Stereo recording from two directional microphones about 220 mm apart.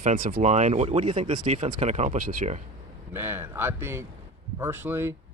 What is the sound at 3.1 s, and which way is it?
A man's voice, 10° right (ahead or behind).